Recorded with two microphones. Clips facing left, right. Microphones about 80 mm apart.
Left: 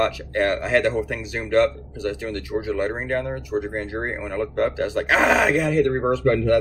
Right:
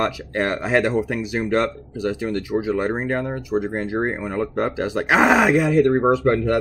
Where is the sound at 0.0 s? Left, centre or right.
Centre.